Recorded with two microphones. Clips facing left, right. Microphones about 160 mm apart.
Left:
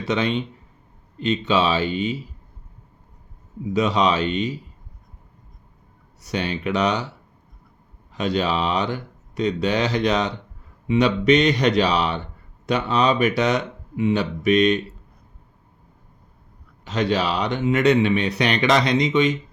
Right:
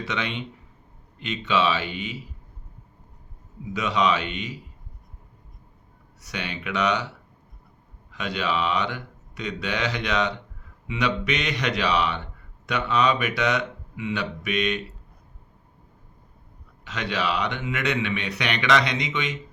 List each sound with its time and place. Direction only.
0.1 s speech: 35° left (ahead or behind)
3.7 s speech: 35° left (ahead or behind)
6.2 s speech: 35° left (ahead or behind)
8.1 s speech: 35° left (ahead or behind)
16.8 s speech: 35° left (ahead or behind)